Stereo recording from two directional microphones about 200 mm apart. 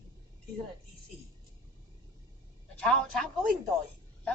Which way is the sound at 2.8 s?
5° left (ahead or behind).